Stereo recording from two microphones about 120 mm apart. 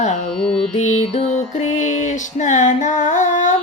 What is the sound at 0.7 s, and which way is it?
Music, 75° left (ahead or behind).